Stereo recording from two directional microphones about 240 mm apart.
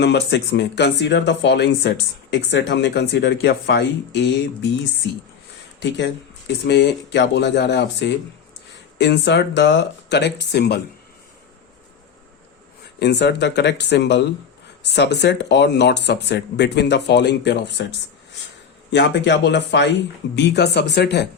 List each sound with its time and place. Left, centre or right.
0.0 s speech: left
6.6 s speech: left
12.8 s speech: left
18.9 s speech: left